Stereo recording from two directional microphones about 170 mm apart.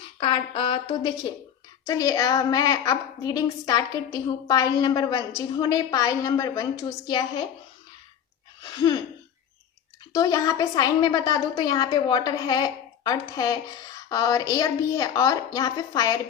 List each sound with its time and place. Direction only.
0.2 s speech: 30° left (ahead or behind)
1.9 s a woman's voice: 20° left (ahead or behind)
8.6 s a sound: 25° left (ahead or behind)
10.1 s a woman's voice: 20° left (ahead or behind)